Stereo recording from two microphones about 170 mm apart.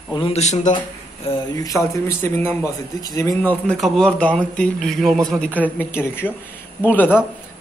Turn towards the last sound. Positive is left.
turn(degrees=10)  # may be behind; listen again after turning